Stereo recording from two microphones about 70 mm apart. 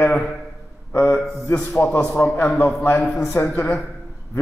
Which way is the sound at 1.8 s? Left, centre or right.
Left.